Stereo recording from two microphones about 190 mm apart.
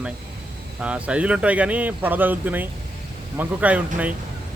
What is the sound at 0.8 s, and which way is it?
A man's voice, 5° right (ahead or behind).